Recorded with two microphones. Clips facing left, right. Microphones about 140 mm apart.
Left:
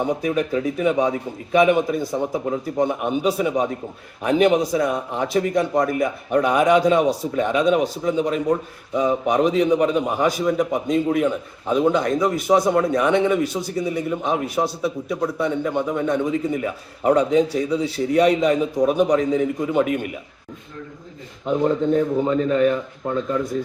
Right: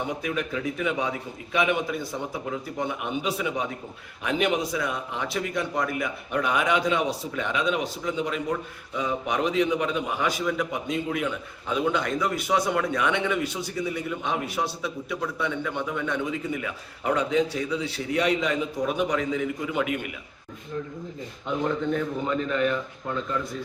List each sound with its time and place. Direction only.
0.0 s a man's voice: 40° left (ahead or behind)
21.4 s a man's voice: 35° left (ahead or behind)